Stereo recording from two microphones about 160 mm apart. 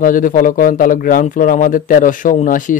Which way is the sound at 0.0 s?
60° left (ahead or behind).